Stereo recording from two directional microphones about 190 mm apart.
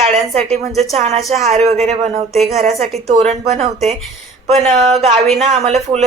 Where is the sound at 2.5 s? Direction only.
35° right (ahead or behind).